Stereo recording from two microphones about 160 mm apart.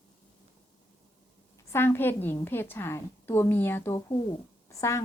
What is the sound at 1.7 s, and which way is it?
A woman's voice, 15° left (ahead or behind).